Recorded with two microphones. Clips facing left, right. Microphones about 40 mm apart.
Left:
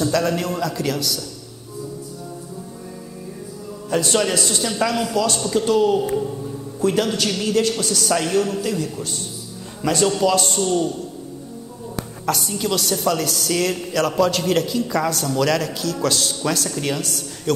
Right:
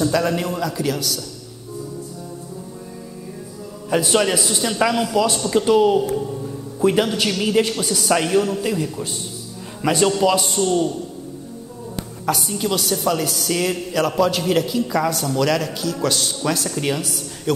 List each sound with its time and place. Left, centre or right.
0.0 s a man's voice: centre
3.9 s a man's voice: centre
12.3 s a woman's voice: centre